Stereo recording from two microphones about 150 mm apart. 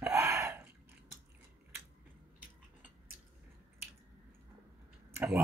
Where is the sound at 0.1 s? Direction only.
20° right (ahead or behind).